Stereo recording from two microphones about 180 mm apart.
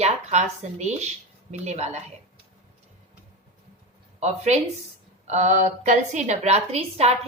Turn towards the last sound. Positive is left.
turn(degrees=-35)  # may be behind; listen again after turning